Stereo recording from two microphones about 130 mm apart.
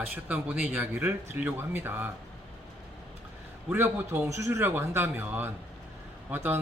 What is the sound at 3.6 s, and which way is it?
A man's voice, 15° right (ahead or behind).